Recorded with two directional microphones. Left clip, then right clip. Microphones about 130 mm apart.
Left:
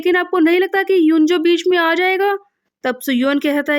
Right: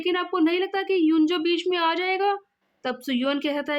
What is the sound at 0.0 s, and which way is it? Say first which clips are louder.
Speech: left 9 dB; 50° left (ahead or behind).